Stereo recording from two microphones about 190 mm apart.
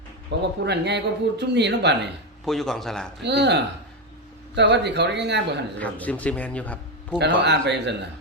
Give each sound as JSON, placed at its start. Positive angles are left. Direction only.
{"t": 0.6, "sound": "speech", "side_deg": -65}
{"t": 2.4, "sound": "speech", "side_deg": 0}
{"t": 3.2, "sound": "speech", "side_deg": -65}
{"t": 5.8, "sound": "a man's voice", "side_deg": 10}
{"t": 7.4, "sound": "speech", "side_deg": -65}